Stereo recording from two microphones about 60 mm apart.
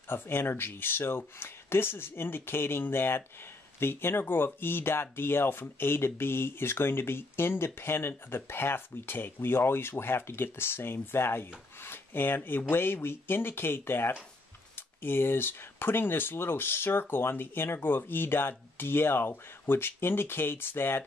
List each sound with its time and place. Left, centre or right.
0.1 s speech: left